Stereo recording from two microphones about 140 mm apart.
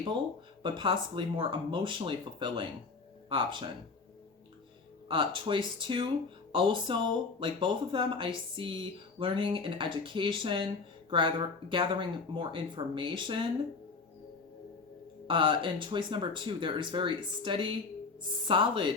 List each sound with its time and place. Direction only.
0.6 s speech: 35° right (ahead or behind)
5.0 s speech: 35° right (ahead or behind)
11.7 s speech: 35° right (ahead or behind)
15.3 s speech: 35° right (ahead or behind)